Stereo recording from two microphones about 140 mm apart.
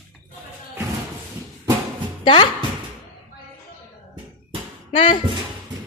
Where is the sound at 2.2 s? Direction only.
35° left (ahead or behind).